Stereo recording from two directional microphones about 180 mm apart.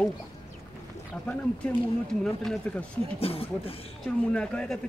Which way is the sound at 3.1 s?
30° left (ahead or behind).